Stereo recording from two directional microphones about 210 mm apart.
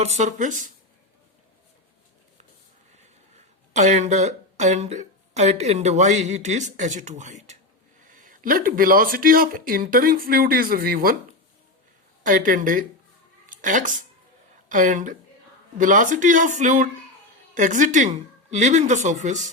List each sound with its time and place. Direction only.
0.0 s speech: 35° right (ahead or behind)
3.7 s speech: 35° right (ahead or behind)
12.2 s speech: 40° right (ahead or behind)